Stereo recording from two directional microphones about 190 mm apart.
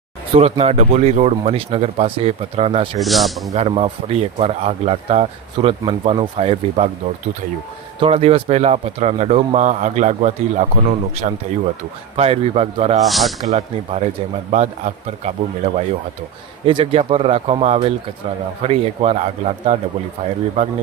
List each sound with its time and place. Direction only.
0.3 s speech: 30° right (ahead or behind)
3.0 s a man's voice: centre (ahead or behind)
3.5 s speech: 30° right (ahead or behind)
7.9 s speech: 30° right (ahead or behind)
13.1 s a man's voice: centre (ahead or behind)
13.4 s speech: 35° right (ahead or behind)